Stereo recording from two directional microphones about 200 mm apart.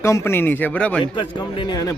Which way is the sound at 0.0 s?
15° left (ahead or behind).